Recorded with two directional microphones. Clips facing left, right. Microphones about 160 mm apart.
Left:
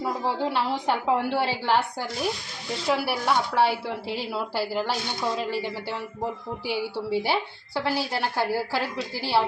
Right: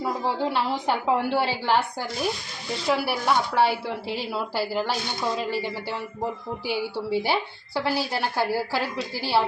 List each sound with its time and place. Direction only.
0.0 s speech: centre (ahead or behind)